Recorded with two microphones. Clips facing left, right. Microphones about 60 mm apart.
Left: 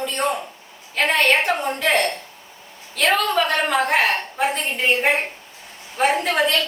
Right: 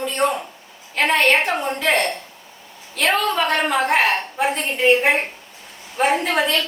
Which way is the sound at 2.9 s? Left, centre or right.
Centre.